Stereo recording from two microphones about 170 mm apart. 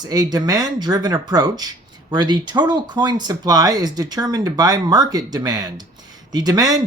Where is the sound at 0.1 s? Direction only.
20° right (ahead or behind).